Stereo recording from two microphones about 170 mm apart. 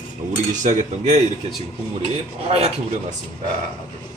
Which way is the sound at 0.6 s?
45° right (ahead or behind).